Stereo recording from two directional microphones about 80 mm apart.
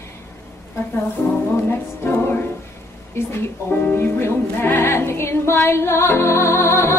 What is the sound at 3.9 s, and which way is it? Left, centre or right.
Music, left.